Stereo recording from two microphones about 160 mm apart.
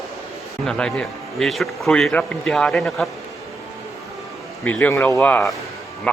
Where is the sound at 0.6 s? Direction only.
5° left (ahead or behind).